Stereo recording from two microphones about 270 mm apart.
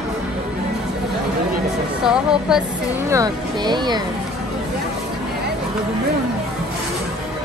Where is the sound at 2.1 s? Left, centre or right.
Centre.